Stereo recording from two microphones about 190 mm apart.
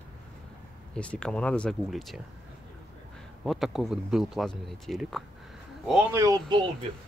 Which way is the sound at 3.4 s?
Centre (ahead or behind).